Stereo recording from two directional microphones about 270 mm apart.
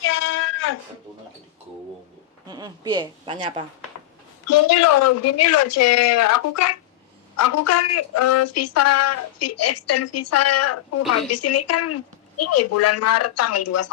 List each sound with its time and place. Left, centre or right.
0.0 s cat: left
2.5 s a woman's voice: centre
4.4 s a woman's voice: left